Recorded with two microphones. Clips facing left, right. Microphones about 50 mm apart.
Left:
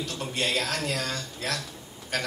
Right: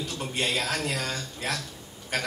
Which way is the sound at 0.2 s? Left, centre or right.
Centre.